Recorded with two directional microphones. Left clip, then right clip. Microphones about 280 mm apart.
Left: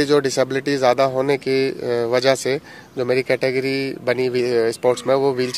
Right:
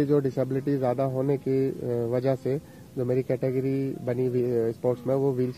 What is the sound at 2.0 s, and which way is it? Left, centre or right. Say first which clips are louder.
Speech: left 10 dB; centre.